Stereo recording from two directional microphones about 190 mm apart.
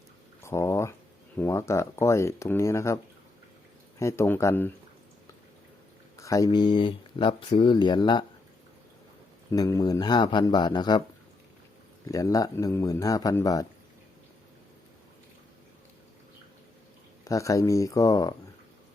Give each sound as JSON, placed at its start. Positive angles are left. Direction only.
{"t": 0.4, "sound": "a sound", "side_deg": 15}
{"t": 1.4, "sound": "speech", "side_deg": 15}
{"t": 6.1, "sound": "speech", "side_deg": 15}
{"t": 9.5, "sound": "speech", "side_deg": 15}
{"t": 12.0, "sound": "speech", "side_deg": 20}
{"t": 17.2, "sound": "speech", "side_deg": 15}